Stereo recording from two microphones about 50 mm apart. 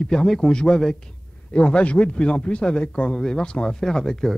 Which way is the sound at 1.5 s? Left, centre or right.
Left.